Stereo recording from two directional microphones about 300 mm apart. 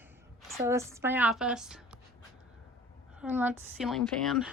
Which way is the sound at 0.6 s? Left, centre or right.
Centre.